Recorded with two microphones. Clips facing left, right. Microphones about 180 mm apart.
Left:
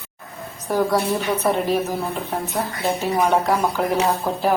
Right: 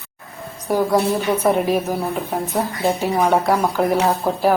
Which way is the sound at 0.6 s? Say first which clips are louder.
Right 2 dB; 10° right (ahead or behind).